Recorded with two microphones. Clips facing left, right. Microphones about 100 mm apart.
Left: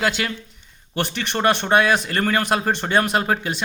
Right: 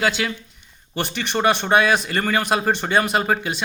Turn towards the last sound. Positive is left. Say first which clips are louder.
# even
turn(degrees=0)  # may be behind; listen again after turning